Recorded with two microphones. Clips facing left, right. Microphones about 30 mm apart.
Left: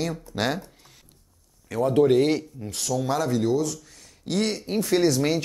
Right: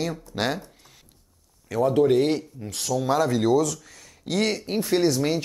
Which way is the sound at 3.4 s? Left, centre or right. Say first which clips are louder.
Right 3 dB; right.